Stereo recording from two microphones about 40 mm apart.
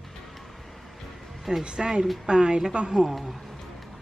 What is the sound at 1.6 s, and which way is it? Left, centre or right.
A woman's voice, right.